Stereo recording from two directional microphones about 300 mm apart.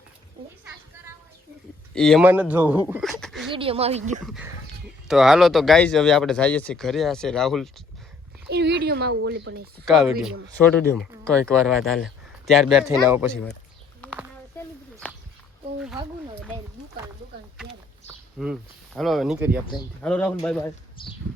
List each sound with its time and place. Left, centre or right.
2.0 s speech: centre
3.5 s speech: centre
4.3 s speech: centre
8.4 s speech: right
9.8 s speech: centre
13.3 s speech: centre
15.0 s a sound: centre
18.1 s a sound: centre
18.9 s speech: centre